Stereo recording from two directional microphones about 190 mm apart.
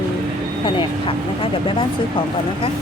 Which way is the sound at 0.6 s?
25° left (ahead or behind).